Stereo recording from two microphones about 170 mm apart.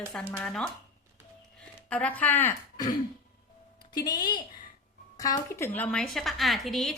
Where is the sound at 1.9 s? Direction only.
10° left (ahead or behind).